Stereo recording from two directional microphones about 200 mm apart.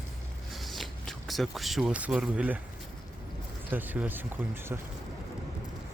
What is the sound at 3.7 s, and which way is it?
Speech, 10° right (ahead or behind).